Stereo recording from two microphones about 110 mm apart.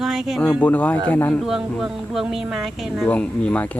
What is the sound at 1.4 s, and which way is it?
Speech, 5° right (ahead or behind).